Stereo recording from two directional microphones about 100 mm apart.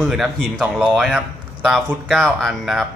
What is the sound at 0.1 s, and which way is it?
Speech, 5° right (ahead or behind).